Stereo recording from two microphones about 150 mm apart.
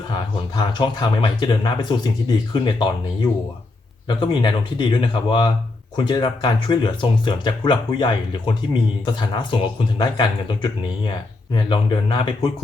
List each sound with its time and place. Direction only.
0.1 s speech: 30° left (ahead or behind)